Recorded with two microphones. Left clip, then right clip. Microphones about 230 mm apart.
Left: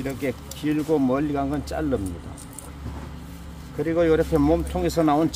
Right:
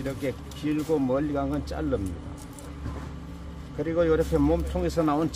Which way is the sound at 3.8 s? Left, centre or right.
Left.